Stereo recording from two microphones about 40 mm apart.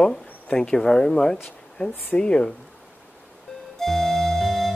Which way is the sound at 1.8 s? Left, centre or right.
Left.